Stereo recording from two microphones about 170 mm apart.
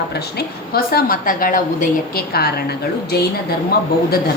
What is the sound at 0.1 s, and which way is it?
A woman's voice, 65° left (ahead or behind).